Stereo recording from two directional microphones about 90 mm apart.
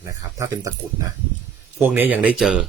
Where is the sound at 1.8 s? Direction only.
20° right (ahead or behind).